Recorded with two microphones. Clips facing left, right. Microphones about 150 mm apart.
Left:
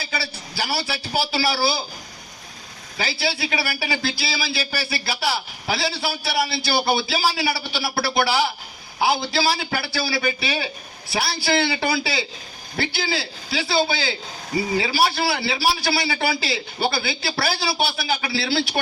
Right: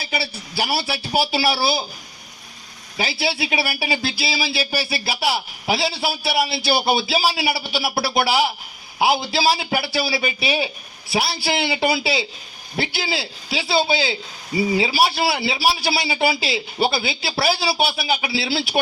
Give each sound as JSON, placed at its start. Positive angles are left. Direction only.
{"t": 0.1, "sound": "a man's voice", "side_deg": -25}
{"t": 3.0, "sound": "a man's voice", "side_deg": -25}
{"t": 4.2, "sound": "a man's voice", "side_deg": -10}